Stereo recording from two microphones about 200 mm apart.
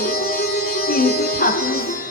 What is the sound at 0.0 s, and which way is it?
Music, 50° left (ahead or behind).